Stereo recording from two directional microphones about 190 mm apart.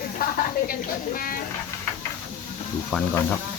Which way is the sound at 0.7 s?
50° left (ahead or behind).